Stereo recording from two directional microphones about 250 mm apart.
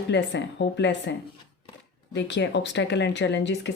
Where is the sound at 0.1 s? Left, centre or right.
Left.